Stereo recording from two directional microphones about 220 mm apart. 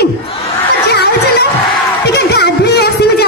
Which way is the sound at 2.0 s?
50° left (ahead or behind).